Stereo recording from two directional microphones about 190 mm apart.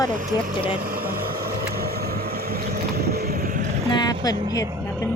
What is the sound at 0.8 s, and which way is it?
Vehicle, 50° right (ahead or behind).